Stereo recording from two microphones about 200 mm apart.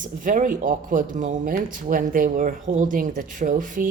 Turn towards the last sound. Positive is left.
turn(degrees=-40)  # may be behind; listen again after turning